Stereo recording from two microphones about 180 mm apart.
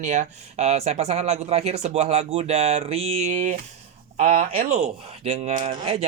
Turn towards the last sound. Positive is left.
turn(degrees=-35)  # may be behind; listen again after turning